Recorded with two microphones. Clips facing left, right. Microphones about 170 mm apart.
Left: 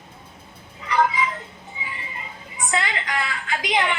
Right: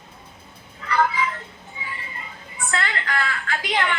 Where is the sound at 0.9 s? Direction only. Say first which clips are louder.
Left 1 dB; 15° left (ahead or behind).